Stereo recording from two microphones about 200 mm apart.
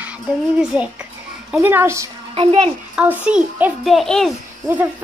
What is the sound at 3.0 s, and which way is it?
A child's voice, 5° right (ahead or behind).